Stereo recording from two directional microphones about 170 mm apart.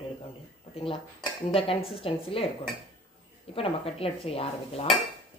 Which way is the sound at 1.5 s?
35° left (ahead or behind).